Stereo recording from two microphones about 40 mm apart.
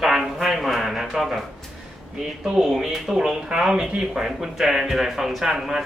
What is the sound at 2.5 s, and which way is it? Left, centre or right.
Speech, centre.